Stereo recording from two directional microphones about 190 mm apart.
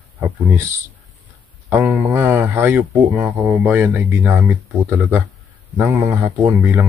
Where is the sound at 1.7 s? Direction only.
10° right (ahead or behind).